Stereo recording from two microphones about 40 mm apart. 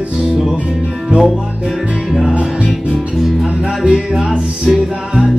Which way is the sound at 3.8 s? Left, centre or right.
Centre.